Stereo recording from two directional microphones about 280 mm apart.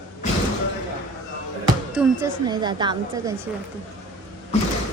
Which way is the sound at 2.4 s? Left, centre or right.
Centre.